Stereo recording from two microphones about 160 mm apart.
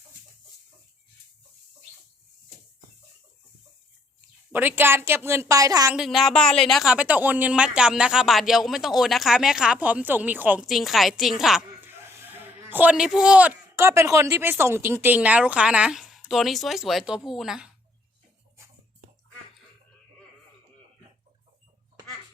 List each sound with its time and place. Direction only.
4.5 s a woman's voice: 10° right (ahead or behind)
5.9 s a woman's voice: centre (ahead or behind)
11.9 s a man's voice: 15° right (ahead or behind)